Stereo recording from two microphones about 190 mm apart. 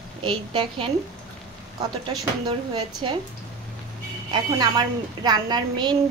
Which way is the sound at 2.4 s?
20° right (ahead or behind).